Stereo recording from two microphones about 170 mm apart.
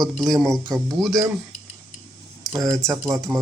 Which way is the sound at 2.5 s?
20° right (ahead or behind).